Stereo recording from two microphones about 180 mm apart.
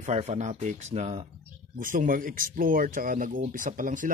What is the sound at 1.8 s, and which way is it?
Speech, 50° right (ahead or behind).